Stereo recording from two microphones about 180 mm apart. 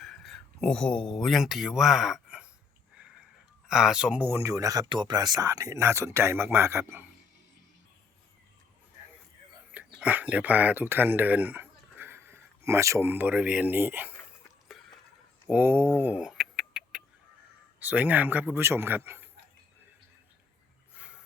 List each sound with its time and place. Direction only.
0.0 s speech: centre (ahead or behind)
3.7 s speech: 5° right (ahead or behind)
9.7 s speech: 10° right (ahead or behind)
15.4 s a sound: 10° right (ahead or behind)
17.7 s speech: 10° right (ahead or behind)
20.9 s a sound: 5° right (ahead or behind)